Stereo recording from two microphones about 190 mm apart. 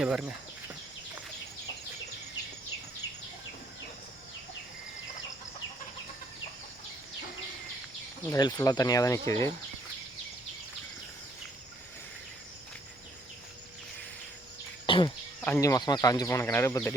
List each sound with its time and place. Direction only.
0.0 s speech: 5° right (ahead or behind)
8.3 s speech: 20° left (ahead or behind)
14.8 s insect: 25° left (ahead or behind)
15.4 s speech: 15° left (ahead or behind)